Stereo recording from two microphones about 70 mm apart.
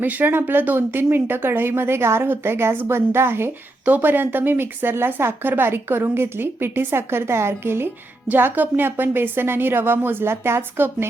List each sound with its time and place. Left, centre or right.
0.0 s speech: right